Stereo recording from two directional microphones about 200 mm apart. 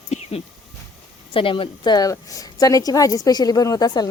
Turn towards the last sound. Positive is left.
turn(degrees=20)  # may be behind; listen again after turning